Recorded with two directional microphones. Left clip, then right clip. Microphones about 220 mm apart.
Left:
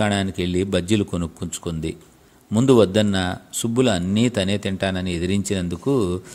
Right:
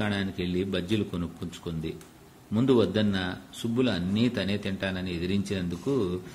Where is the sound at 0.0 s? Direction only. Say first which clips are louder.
Left 9 dB; 45° left (ahead or behind).